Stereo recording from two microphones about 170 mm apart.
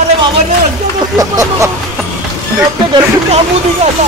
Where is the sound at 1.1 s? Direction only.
20° right (ahead or behind).